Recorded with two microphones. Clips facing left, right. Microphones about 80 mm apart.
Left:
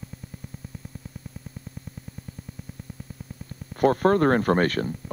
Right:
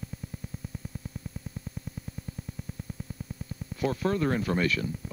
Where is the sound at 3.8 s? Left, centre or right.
Left.